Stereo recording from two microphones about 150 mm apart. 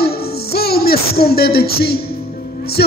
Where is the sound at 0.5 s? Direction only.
90° left.